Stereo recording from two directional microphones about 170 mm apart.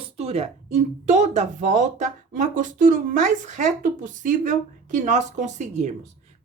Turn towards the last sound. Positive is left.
turn(degrees=-45)  # may be behind; listen again after turning